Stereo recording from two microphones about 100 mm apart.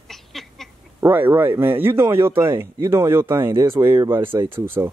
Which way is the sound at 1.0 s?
20° right (ahead or behind).